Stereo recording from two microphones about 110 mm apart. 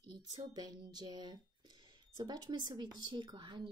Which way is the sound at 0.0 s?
40° right (ahead or behind).